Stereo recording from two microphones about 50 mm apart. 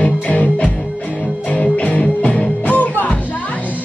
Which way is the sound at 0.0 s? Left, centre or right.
Left.